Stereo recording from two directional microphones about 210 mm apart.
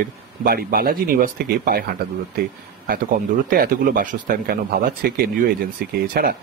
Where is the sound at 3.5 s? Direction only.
40° right (ahead or behind).